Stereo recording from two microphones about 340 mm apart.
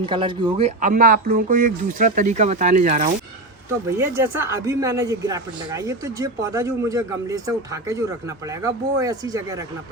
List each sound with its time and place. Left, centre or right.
0.0 s speech: centre
3.8 s speech: centre